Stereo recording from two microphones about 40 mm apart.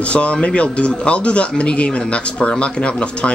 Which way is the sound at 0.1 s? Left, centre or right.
Left.